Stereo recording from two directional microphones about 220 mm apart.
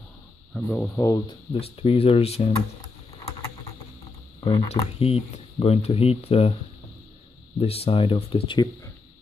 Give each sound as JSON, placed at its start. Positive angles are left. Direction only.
{"t": 0.7, "sound": "speech", "side_deg": 10}
{"t": 4.5, "sound": "speech", "side_deg": 20}
{"t": 7.5, "sound": "speech", "side_deg": 25}